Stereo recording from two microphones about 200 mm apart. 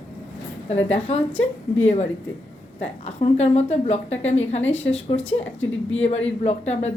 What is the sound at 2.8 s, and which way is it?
A woman's voice, 30° left (ahead or behind).